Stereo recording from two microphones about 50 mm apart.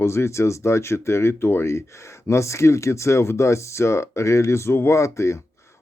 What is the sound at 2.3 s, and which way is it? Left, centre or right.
Speech, left.